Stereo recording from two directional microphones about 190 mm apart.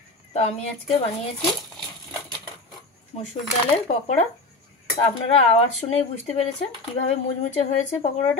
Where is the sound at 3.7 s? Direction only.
35° left (ahead or behind).